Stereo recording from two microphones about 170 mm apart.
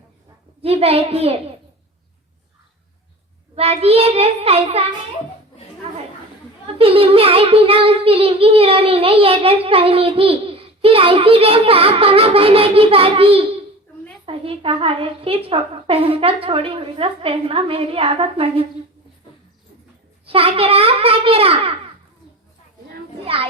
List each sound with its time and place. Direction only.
0.6 s a child's voice: 35° right (ahead or behind)
3.5 s a child's voice: 35° right (ahead or behind)
6.7 s a child's voice: 35° right (ahead or behind)
20.2 s a child's voice: 35° right (ahead or behind)
23.2 s a child's voice: 35° right (ahead or behind)